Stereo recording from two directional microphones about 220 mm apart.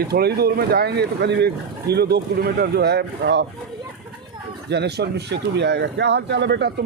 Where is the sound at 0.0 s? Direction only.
45° right (ahead or behind).